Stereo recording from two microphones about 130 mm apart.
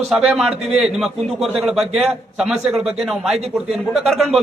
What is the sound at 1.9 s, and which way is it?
Speech, 55° right (ahead or behind).